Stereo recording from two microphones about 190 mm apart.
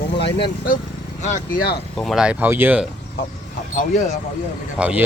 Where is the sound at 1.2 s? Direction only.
40° left (ahead or behind).